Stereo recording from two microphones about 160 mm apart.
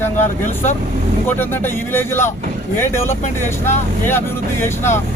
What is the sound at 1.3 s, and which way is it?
Speech, 15° left (ahead or behind).